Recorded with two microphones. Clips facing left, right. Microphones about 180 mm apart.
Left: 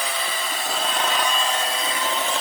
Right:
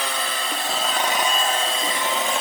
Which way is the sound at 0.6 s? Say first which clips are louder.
Right 1 dB; centre (ahead or behind).